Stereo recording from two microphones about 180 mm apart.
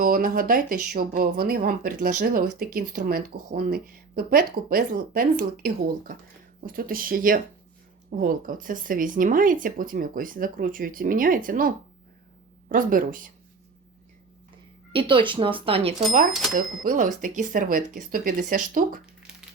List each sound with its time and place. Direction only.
0.0 s speech: 50° right (ahead or behind)
14.9 s speech: 30° right (ahead or behind)
16.6 s speech: 50° right (ahead or behind)
19.3 s a sound: 5° right (ahead or behind)